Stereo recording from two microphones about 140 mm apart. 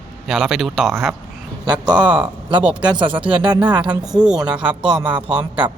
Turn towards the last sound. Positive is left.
turn(degrees=-10)  # may be behind; listen again after turning